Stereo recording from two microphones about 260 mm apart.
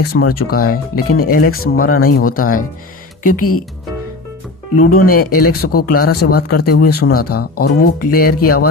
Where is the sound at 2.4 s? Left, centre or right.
Left.